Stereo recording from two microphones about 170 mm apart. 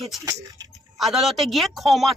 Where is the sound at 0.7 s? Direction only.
Centre (ahead or behind).